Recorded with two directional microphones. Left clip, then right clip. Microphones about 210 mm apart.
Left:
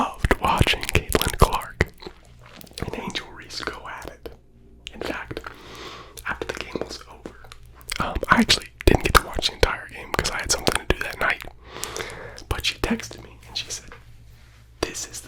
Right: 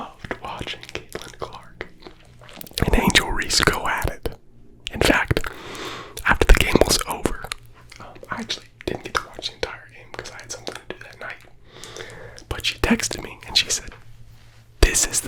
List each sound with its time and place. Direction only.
0.0 s whispering: 35° left (ahead or behind)
2.6 s whispering: 25° right (ahead or behind)
3.1 s whispering: 45° right (ahead or behind)
4.9 s whispering: 45° right (ahead or behind)
6.4 s whispering: 45° right (ahead or behind)
7.9 s whispering: 55° left (ahead or behind)
12.0 s whispering: 20° left (ahead or behind)
13.0 s whispering: 35° right (ahead or behind)
14.8 s whispering: 45° right (ahead or behind)